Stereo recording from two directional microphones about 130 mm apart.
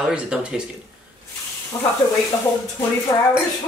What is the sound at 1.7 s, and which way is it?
Sizzle, 25° left (ahead or behind).